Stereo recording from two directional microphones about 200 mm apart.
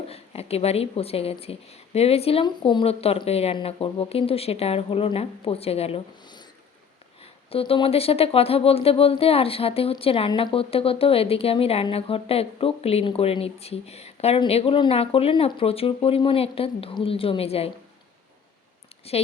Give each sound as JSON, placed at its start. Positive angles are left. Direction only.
{"t": 0.1, "sound": "speech", "side_deg": 30}
{"t": 19.1, "sound": "a woman's voice", "side_deg": 30}